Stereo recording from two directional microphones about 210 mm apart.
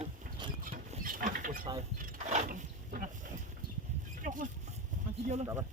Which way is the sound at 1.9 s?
40° right (ahead or behind).